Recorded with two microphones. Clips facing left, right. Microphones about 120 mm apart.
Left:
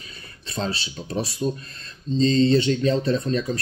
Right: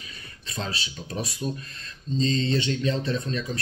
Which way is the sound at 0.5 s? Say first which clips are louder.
Left 5 dB; 35° left (ahead or behind).